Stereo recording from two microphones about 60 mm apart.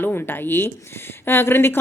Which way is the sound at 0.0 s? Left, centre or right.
Left.